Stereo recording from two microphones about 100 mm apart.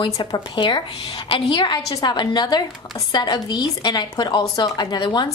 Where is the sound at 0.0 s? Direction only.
50° left (ahead or behind).